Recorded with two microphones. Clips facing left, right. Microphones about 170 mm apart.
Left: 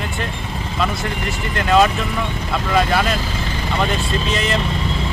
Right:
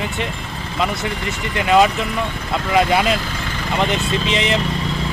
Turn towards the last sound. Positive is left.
turn(degrees=-20)  # may be behind; listen again after turning